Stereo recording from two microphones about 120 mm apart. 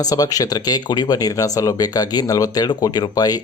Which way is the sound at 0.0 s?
30° left (ahead or behind).